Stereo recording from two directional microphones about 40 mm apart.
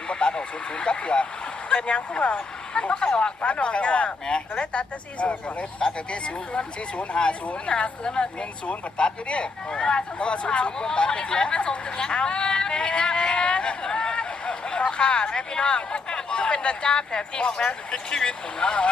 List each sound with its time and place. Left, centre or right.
0.1 s speech: left
2.9 s speech: centre